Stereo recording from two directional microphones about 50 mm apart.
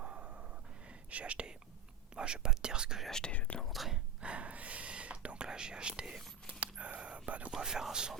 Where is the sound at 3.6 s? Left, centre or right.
Centre.